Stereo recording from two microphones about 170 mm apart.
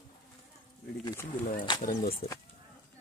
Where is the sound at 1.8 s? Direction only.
60° left (ahead or behind).